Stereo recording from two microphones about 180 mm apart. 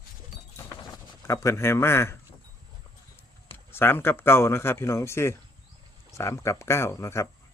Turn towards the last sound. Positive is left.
turn(degrees=15)  # may be behind; listen again after turning